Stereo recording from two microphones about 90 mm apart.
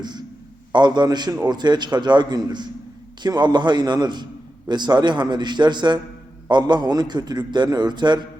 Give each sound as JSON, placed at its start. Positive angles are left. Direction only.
{"t": 0.0, "sound": "a man's voice", "side_deg": -55}